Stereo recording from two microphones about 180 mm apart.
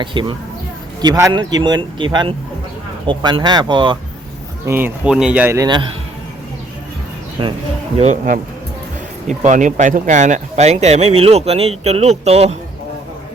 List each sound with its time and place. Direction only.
0.0 s speech: 25° right (ahead or behind)
4.6 s speech: 10° right (ahead or behind)
7.4 s speech: 25° right (ahead or behind)
7.9 s speech: 40° right (ahead or behind)